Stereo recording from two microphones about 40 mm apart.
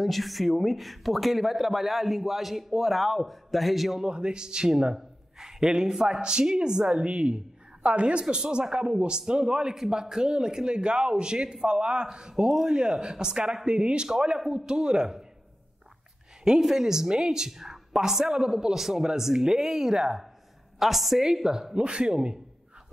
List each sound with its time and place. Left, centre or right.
0.0 s speech: centre
4.0 s speech: right
4.9 s a sound: centre
5.7 s speech: centre
16.4 s speech: centre
21.7 s speech: right